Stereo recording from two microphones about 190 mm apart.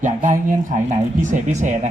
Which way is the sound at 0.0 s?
45° right (ahead or behind).